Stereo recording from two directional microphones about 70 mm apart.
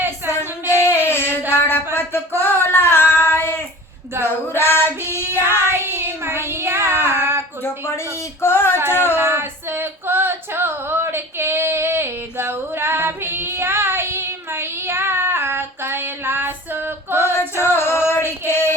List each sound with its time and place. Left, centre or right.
0.3 s a sound: left
4.2 s female singing: left
5.7 s child singing: right
7.6 s a sound: left
8.9 s child singing: left
9.1 s female singing: right
17.6 s music: left